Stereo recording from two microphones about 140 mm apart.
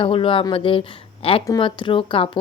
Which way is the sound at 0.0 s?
40° left (ahead or behind).